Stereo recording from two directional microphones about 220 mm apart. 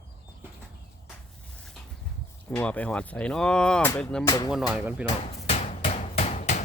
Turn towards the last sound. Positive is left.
turn(degrees=30)  # may be behind; listen again after turning